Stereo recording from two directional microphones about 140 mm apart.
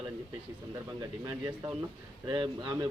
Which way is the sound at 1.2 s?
30° right (ahead or behind).